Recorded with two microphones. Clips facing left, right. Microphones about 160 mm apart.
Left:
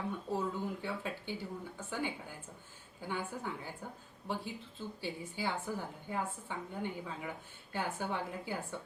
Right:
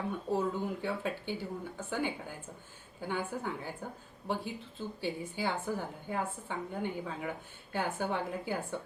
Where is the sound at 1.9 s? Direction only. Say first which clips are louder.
Right 4 dB; 60° right (ahead or behind).